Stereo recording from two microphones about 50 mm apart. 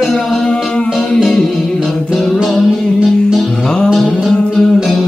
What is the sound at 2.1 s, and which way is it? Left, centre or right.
Music, centre.